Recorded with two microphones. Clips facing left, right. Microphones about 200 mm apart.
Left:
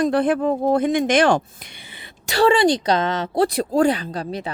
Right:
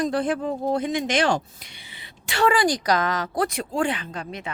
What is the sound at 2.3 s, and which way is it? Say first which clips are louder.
A woman's voice: left 5 dB; 30° left (ahead or behind).